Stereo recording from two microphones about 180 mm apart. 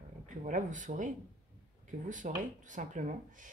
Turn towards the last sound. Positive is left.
turn(degrees=-45)  # may be behind; listen again after turning